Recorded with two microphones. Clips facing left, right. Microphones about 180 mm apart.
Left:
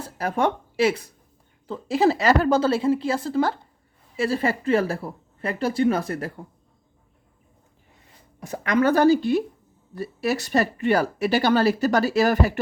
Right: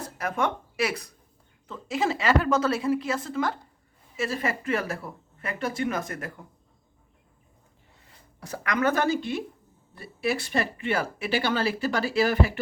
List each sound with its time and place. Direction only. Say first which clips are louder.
0.0 s speech: left 5 dB; 30° left (ahead or behind)
8.4 s speech: left 6 dB; 20° left (ahead or behind); by 12.5 s 45° left (ahead or behind)